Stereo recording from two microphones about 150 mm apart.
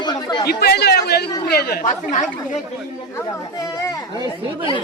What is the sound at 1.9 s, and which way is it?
Speech, 55° left (ahead or behind).